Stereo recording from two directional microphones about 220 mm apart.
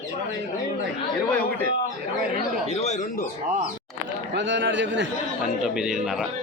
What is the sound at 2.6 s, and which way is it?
Speech, 30° left (ahead or behind).